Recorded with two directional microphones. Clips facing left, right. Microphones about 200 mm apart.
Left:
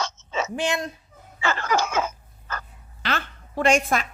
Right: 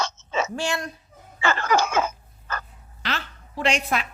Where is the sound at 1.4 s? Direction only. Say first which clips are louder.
Right 2 dB; 60° right (ahead or behind).